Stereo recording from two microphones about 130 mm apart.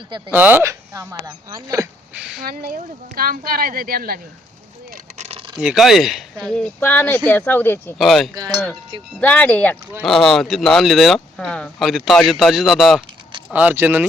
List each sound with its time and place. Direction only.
0.3 s speech: 15° right (ahead or behind)
2.4 s speech: 90° right
4.9 s vehicle: 60° right (ahead or behind)
5.5 s speech: 5° right (ahead or behind)
6.7 s speech: 15° left (ahead or behind)
7.9 s speech: centre (ahead or behind)
8.4 s cowbell: 10° left (ahead or behind)
9.2 s speech: 10° left (ahead or behind)
10.0 s speech: centre (ahead or behind)
13.5 s speech: 15° right (ahead or behind)